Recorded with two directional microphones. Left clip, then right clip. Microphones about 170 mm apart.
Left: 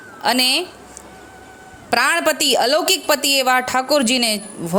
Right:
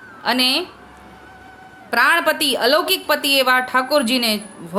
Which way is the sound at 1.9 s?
45° left (ahead or behind).